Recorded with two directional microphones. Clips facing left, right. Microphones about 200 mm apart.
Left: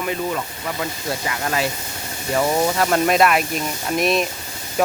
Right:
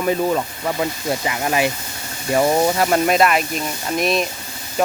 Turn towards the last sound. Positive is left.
turn(degrees=0)  # may be behind; listen again after turning